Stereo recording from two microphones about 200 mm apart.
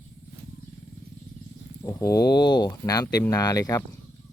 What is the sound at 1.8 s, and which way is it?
Speech, 15° left (ahead or behind).